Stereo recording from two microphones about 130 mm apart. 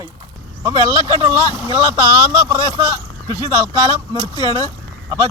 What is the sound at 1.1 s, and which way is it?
Speech, 30° right (ahead or behind).